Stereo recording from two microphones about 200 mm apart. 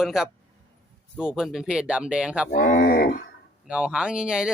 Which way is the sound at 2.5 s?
45° left (ahead or behind).